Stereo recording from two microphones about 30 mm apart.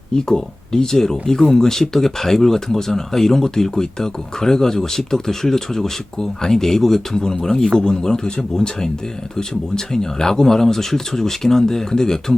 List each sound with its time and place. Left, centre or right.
0.1 s a man's voice: centre